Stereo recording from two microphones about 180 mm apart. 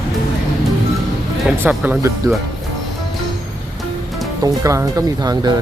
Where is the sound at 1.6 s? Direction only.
10° right (ahead or behind).